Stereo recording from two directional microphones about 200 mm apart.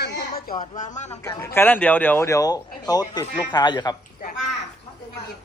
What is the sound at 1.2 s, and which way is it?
Speech, 15° left (ahead or behind).